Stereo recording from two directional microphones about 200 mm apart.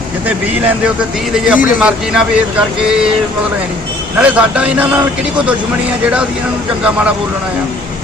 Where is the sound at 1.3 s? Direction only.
5° right (ahead or behind).